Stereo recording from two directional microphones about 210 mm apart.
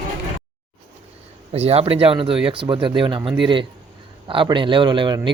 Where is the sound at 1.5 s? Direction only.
30° right (ahead or behind).